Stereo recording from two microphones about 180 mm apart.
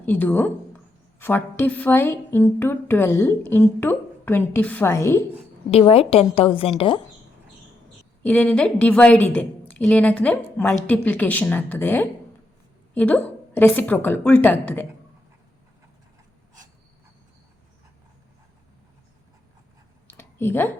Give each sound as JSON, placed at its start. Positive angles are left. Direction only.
{"t": 0.0, "sound": "speech", "side_deg": 10}
{"t": 5.7, "sound": "a woman's voice", "side_deg": 35}
{"t": 8.2, "sound": "speech", "side_deg": 5}
{"t": 20.1, "sound": "a sound", "side_deg": 10}